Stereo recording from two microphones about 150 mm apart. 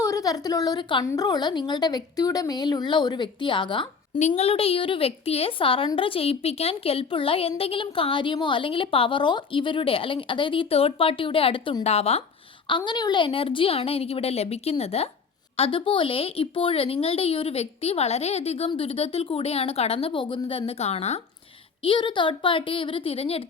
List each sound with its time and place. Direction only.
0.0 s a woman's voice: 25° left (ahead or behind)
4.2 s a woman's voice: 45° left (ahead or behind)
12.6 s a woman's voice: 30° left (ahead or behind)
21.8 s a woman's voice: 30° left (ahead or behind)